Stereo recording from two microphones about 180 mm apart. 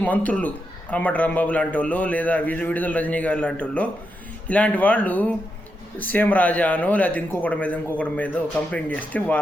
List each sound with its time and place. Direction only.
0.0 s a man's voice: 10° left (ahead or behind)